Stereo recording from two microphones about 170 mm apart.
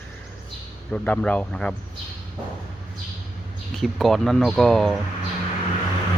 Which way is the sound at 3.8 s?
Centre (ahead or behind).